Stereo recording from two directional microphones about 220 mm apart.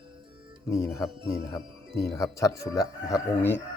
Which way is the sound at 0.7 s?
15° left (ahead or behind).